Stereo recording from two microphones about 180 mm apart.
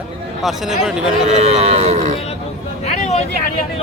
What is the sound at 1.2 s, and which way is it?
Cattle, 35° right (ahead or behind).